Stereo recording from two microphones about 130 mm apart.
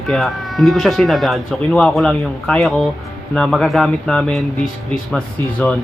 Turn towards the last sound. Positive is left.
turn(degrees=5)  # may be behind; listen again after turning